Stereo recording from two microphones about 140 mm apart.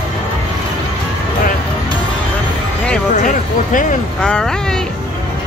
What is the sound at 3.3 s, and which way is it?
Speech, 70° left (ahead or behind).